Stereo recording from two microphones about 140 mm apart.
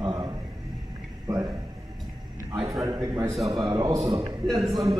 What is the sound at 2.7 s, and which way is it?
A man's voice, 25° right (ahead or behind).